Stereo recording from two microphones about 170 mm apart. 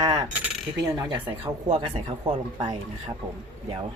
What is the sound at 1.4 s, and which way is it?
Speech, 30° right (ahead or behind).